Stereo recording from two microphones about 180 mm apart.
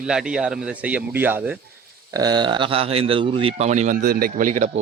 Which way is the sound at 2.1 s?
20° right (ahead or behind).